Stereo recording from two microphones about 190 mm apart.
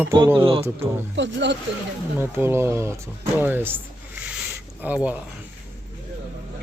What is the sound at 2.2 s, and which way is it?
Speech, 10° right (ahead or behind).